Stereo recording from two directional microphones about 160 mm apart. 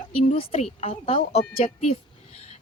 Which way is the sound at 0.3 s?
40° left (ahead or behind).